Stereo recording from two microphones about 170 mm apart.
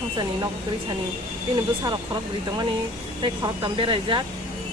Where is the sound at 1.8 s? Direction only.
25° right (ahead or behind).